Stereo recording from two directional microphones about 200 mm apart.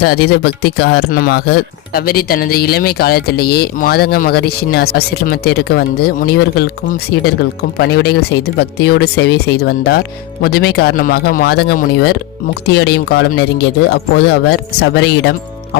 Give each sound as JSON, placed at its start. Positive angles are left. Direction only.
{"t": 0.0, "sound": "speech", "side_deg": 55}